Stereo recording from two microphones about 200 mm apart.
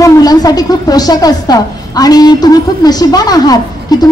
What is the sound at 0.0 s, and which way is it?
A woman's voice, 20° left (ahead or behind).